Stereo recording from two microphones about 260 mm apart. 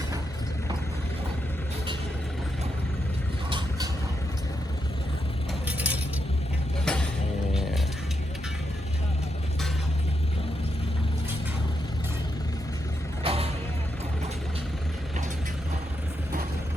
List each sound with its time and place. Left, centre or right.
5.6 s a sound: centre
6.8 s music: centre
13.2 s vehicle: right